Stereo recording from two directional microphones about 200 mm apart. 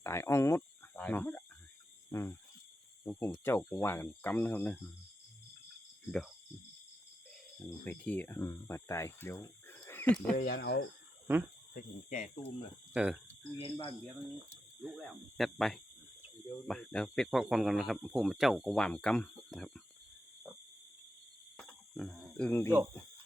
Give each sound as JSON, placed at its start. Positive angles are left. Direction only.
{"t": 0.0, "sound": "speech", "side_deg": 15}
{"t": 2.0, "sound": "cricket", "side_deg": 15}
{"t": 3.0, "sound": "speech", "side_deg": 20}
{"t": 6.1, "sound": "speech", "side_deg": 0}
{"t": 7.6, "sound": "speech", "side_deg": 10}
{"t": 10.3, "sound": "speech", "side_deg": 50}
{"t": 11.7, "sound": "speech", "side_deg": 45}
{"t": 12.9, "sound": "speech", "side_deg": -5}
{"t": 13.6, "sound": "speech", "side_deg": 30}
{"t": 14.8, "sound": "speech", "side_deg": 0}
{"t": 21.6, "sound": "a sound", "side_deg": 0}